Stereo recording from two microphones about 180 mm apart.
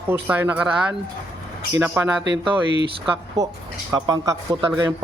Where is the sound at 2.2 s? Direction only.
25° right (ahead or behind).